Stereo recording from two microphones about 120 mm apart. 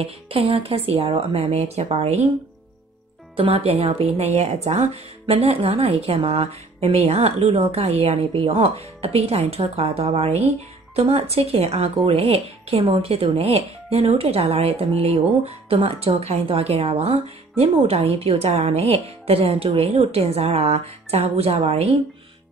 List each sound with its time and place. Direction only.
0.0 s speech: 55° right (ahead or behind)
3.3 s speech: 50° right (ahead or behind)
5.2 s speech: 55° right (ahead or behind)